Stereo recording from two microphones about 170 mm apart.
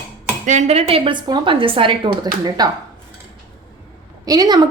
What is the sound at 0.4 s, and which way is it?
A woman's voice, 45° right (ahead or behind).